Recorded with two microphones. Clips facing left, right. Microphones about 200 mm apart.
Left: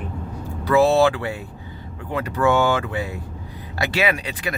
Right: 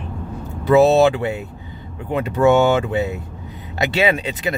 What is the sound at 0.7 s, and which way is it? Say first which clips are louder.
Speech: right 4 dB; 20° right (ahead or behind).